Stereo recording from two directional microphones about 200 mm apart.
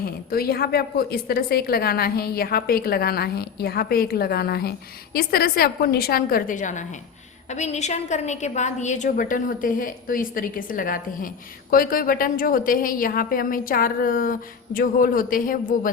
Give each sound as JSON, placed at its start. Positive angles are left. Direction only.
{"t": 0.3, "sound": "a woman's voice", "side_deg": 50}